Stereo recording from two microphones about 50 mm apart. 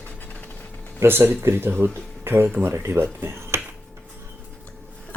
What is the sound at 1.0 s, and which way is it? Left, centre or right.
Speech, right.